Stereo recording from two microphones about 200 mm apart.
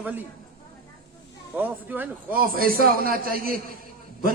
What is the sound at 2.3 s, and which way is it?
A man's voice, 45° right (ahead or behind).